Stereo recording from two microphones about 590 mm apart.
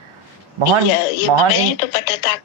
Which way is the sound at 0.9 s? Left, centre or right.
Left.